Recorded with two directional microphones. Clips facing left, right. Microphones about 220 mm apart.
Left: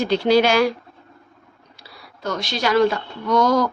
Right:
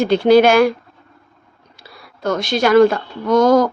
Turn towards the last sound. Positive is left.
turn(degrees=-50)  # may be behind; listen again after turning